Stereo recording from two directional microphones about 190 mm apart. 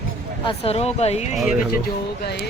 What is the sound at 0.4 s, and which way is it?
Speech, 30° left (ahead or behind).